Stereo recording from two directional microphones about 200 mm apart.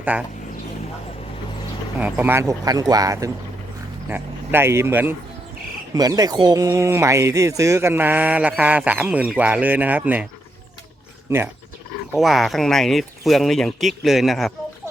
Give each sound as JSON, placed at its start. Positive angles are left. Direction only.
{"t": 0.1, "sound": "speech", "side_deg": -5}
{"t": 2.0, "sound": "speech", "side_deg": -10}
{"t": 12.1, "sound": "speech", "side_deg": 0}